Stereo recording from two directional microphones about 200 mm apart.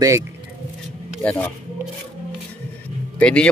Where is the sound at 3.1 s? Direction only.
5° left (ahead or behind).